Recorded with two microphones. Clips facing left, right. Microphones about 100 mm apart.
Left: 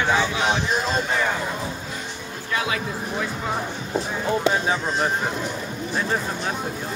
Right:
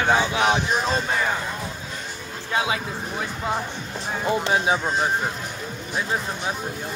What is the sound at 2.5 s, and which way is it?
Speech, 25° right (ahead or behind).